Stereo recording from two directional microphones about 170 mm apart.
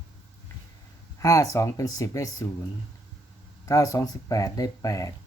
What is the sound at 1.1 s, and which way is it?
Speech, 20° left (ahead or behind).